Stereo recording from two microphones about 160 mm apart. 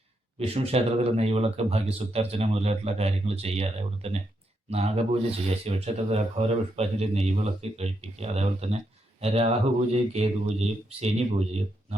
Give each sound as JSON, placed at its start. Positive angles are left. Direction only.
{"t": 0.3, "sound": "speech", "side_deg": -40}